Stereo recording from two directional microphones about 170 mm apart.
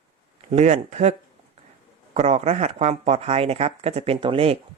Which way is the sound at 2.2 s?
40° right (ahead or behind).